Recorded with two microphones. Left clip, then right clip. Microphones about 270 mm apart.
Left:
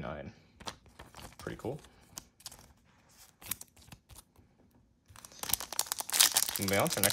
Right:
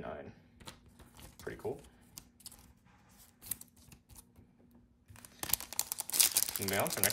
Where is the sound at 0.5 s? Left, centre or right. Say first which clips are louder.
Left 12 dB; left.